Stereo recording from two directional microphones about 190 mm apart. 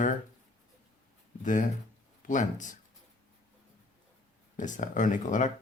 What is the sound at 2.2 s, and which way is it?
Speech, 40° left (ahead or behind).